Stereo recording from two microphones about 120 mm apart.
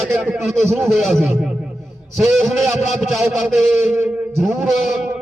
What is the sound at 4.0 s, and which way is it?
Music, 15° right (ahead or behind).